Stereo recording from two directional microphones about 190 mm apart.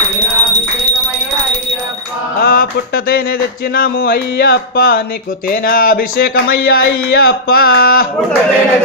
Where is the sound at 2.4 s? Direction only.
50° left (ahead or behind).